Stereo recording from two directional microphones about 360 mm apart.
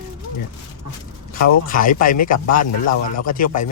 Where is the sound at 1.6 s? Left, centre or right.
Left.